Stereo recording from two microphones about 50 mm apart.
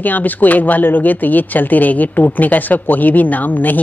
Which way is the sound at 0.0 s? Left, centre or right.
Left.